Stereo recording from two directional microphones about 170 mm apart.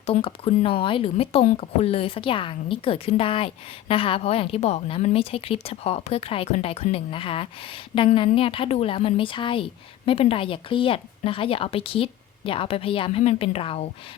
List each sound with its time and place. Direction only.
0.0 s speech: 35° left (ahead or behind)